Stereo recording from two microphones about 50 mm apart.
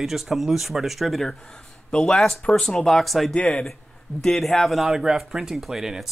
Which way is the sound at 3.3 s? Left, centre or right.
Centre.